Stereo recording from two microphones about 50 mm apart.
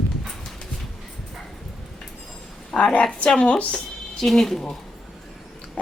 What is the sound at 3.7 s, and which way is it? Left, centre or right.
Speech, centre.